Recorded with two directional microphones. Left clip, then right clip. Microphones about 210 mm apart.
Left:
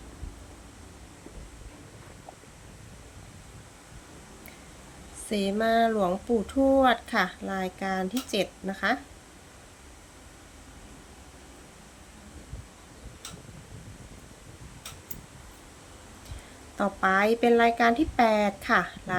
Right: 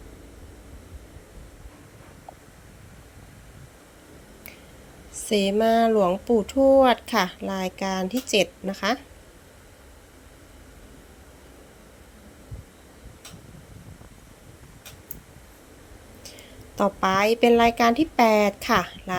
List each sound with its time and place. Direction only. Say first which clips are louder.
5.3 s speech: right 5 dB; 25° right (ahead or behind)
16.7 s speech: right 3 dB; 20° right (ahead or behind)